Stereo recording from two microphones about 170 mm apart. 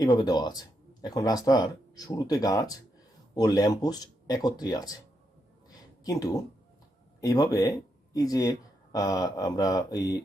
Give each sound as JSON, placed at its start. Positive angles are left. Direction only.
{"t": 0.0, "sound": "speech", "side_deg": 25}
{"t": 5.6, "sound": "a sound", "side_deg": 20}
{"t": 7.2, "sound": "speech", "side_deg": 20}